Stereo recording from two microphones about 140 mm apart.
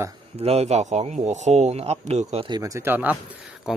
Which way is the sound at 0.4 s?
45° right (ahead or behind).